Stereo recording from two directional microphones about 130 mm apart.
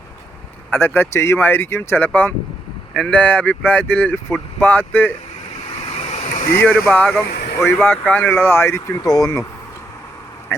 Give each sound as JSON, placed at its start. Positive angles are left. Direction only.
{"t": 0.7, "sound": "speech", "side_deg": 15}
{"t": 5.8, "sound": "waves", "side_deg": 50}
{"t": 6.6, "sound": "speech", "side_deg": 15}